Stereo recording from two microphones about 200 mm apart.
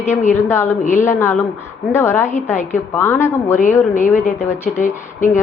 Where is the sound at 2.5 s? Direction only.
35° left (ahead or behind).